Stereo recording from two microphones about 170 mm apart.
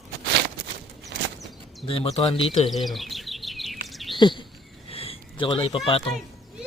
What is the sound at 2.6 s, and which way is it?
Bird, centre (ahead or behind).